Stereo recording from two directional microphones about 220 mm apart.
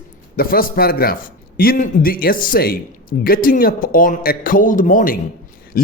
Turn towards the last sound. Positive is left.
turn(degrees=40)  # may be behind; listen again after turning